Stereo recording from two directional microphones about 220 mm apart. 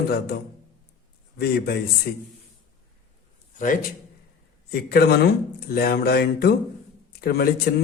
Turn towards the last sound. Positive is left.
turn(degrees=45)  # may be behind; listen again after turning